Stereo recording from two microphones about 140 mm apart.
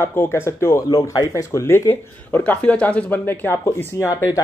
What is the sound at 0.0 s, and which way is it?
Speech, 15° left (ahead or behind).